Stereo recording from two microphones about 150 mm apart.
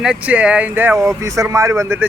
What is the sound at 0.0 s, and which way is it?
Speech, 10° right (ahead or behind).